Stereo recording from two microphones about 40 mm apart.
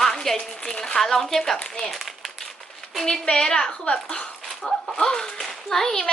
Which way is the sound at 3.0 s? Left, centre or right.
Centre.